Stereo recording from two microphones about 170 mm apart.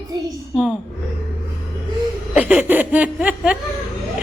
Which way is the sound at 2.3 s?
10° right (ahead or behind).